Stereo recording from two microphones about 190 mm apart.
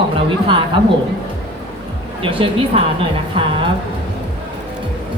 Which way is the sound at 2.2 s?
30° right (ahead or behind).